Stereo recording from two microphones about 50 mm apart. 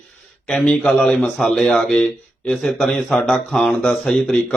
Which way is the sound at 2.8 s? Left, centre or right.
Left.